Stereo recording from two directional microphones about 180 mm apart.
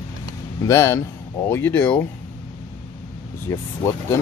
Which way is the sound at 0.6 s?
15° left (ahead or behind).